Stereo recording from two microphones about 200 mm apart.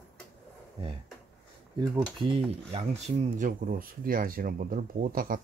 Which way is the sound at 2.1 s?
30° right (ahead or behind).